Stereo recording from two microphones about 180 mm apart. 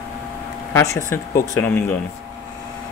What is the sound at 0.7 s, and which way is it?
Speech, 15° left (ahead or behind).